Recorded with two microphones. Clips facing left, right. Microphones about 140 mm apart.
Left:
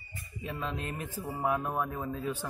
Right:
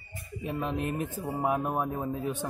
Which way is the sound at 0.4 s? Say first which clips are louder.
Right 5 dB; 20° right (ahead or behind).